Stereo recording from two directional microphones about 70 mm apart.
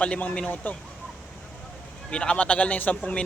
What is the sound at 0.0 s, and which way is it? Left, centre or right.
Speech, centre.